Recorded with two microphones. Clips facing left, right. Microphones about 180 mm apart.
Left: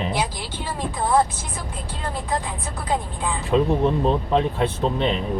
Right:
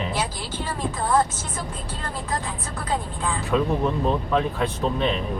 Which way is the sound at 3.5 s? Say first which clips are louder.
Left 4 dB; 25° left (ahead or behind).